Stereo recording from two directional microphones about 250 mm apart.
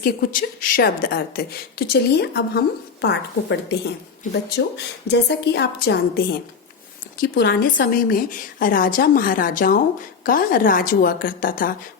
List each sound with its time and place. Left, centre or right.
0.0 s a woman's voice: left